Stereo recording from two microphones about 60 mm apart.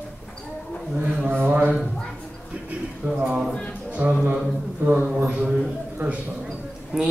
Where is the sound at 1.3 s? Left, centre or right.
Right.